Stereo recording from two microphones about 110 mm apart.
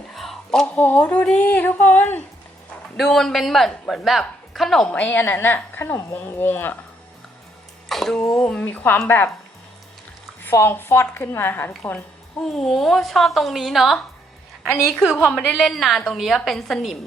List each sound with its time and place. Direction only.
0.1 s a sound: centre (ahead or behind)
0.8 s speech: 15° left (ahead or behind)
3.0 s speech: 5° left (ahead or behind)
7.9 s throat clearing: centre (ahead or behind)
8.4 s speech: 10° left (ahead or behind)
10.4 s a woman's voice: 20° left (ahead or behind)
12.5 s speech: 5° left (ahead or behind)